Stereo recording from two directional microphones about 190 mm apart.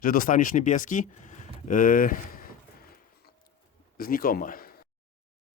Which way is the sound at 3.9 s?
50° left (ahead or behind).